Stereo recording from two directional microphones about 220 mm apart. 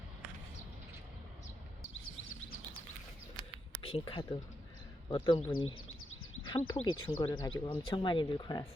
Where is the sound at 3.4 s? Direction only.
25° left (ahead or behind).